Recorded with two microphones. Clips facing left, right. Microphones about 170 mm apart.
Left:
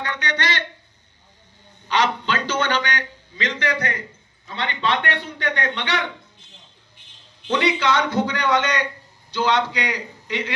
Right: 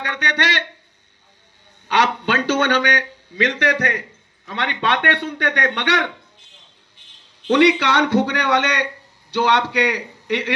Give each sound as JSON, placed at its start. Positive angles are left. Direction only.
{"t": 0.0, "sound": "speech", "side_deg": -70}
{"t": 1.9, "sound": "a man's voice", "side_deg": -70}
{"t": 7.4, "sound": "a man's voice", "side_deg": -70}